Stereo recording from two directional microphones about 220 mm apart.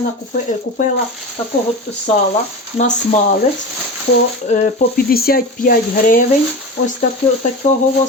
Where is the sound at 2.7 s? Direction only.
30° left (ahead or behind).